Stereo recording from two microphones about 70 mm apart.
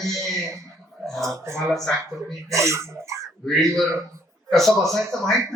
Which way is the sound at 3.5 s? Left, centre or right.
Centre.